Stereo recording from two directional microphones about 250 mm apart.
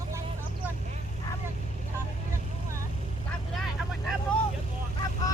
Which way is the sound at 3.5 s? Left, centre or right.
Centre.